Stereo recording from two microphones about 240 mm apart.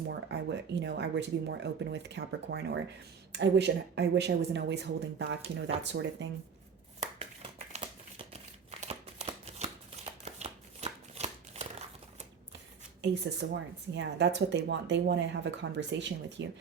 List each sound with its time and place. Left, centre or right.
0.1 s speech: right
7.7 s a sound: right
8.8 s shuffling cards: right
13.0 s speech: right